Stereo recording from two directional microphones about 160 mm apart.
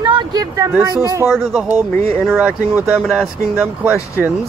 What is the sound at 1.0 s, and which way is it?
Speech, 20° right (ahead or behind).